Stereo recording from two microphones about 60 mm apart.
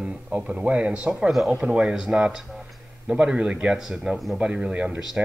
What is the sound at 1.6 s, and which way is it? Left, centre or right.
Speech, centre.